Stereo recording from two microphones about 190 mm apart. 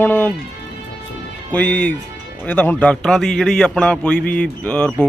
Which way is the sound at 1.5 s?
5° left (ahead or behind).